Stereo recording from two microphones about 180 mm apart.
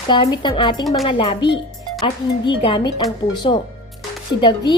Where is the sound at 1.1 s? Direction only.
30° left (ahead or behind).